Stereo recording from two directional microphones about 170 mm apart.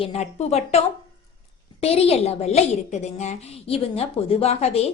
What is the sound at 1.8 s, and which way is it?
A woman's voice, 35° left (ahead or behind).